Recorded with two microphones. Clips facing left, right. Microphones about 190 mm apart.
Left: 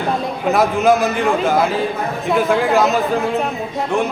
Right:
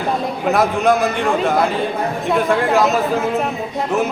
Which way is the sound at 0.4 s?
Centre (ahead or behind).